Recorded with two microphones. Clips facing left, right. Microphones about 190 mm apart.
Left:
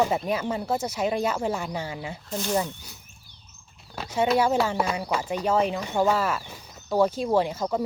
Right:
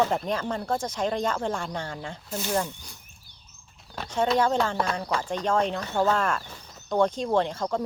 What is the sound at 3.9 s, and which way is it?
Speech, 10° left (ahead or behind).